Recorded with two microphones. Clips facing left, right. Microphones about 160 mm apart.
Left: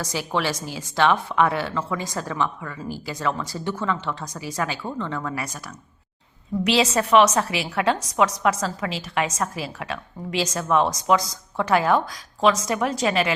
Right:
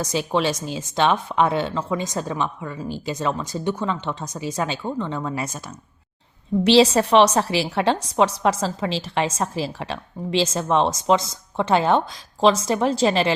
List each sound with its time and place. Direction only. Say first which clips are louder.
0.0 s a woman's voice: right 4 dB; 20° right (ahead or behind)